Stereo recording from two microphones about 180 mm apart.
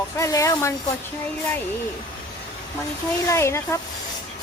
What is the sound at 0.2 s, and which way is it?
Speech, 15° left (ahead or behind).